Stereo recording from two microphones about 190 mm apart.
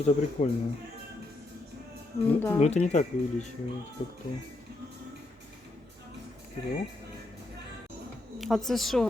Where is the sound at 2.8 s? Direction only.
40° left (ahead or behind).